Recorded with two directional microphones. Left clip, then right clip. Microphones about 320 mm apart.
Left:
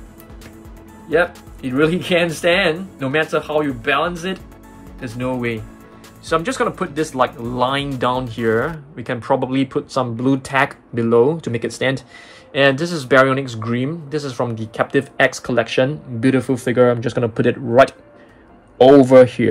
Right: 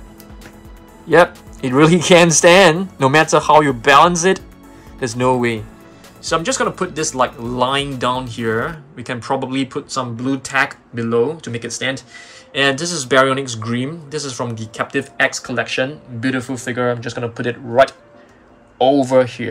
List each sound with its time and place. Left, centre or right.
1.1 s speech: centre; by 17.9 s left
18.9 s speech: left